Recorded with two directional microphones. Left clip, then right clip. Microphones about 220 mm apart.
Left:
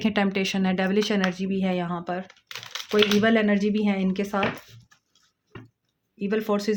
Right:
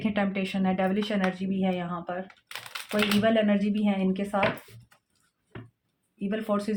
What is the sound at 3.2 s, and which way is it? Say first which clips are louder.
Speech: left 2 dB; 50° left (ahead or behind).